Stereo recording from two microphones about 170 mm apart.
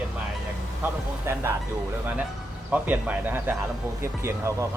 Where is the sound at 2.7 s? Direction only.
10° right (ahead or behind).